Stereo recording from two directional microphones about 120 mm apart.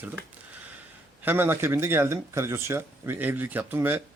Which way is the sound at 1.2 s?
15° right (ahead or behind).